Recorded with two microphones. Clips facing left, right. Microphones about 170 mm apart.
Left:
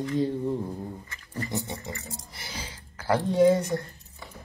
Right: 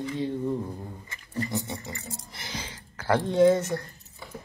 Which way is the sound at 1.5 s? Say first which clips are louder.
Right 1 dB; 20° left (ahead or behind).